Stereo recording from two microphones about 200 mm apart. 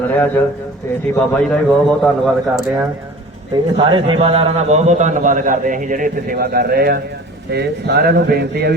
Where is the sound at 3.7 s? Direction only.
25° right (ahead or behind); by 8.8 s 55° right (ahead or behind).